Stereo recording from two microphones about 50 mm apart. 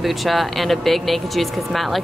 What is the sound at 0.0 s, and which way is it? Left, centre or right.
Speech, centre.